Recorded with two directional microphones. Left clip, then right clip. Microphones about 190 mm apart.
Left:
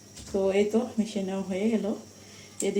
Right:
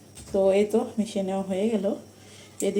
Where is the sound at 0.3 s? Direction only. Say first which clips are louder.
Right 4 dB; 20° right (ahead or behind).